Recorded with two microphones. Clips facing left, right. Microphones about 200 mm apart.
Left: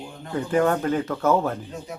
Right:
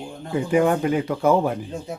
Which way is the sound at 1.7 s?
30° right (ahead or behind).